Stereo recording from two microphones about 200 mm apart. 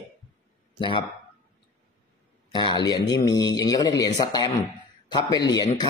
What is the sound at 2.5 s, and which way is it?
Speech, 20° left (ahead or behind).